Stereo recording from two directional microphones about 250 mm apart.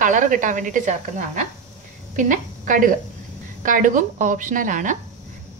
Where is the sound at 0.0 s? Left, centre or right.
Right.